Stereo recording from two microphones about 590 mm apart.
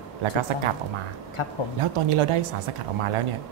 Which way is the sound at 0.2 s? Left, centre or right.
Right.